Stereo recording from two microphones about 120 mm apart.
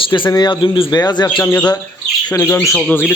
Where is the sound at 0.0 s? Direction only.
40° left (ahead or behind).